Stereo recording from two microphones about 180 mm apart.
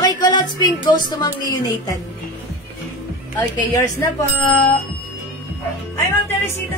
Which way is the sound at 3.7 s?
15° left (ahead or behind).